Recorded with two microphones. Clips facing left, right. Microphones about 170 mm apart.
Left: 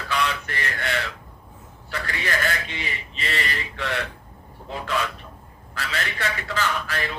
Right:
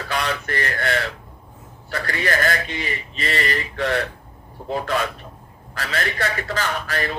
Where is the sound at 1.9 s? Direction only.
45° right (ahead or behind).